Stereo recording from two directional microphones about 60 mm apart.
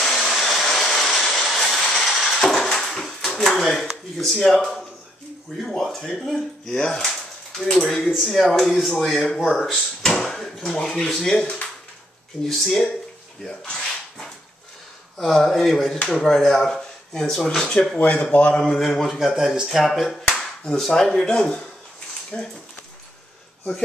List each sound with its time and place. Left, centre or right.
0.0 s a sound: centre
3.3 s speech: centre
5.6 s speech: centre
12.4 s speech: centre
13.4 s rub: centre
15.1 s speech: centre
18.6 s speech: centre